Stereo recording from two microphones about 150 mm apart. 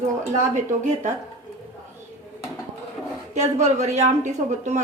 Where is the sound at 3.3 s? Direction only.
50° right (ahead or behind).